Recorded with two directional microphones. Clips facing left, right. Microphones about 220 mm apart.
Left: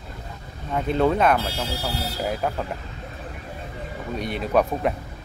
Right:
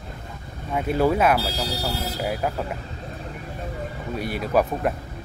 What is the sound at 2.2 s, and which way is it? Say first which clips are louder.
Speech: left 1 dB; 5° right (ahead or behind).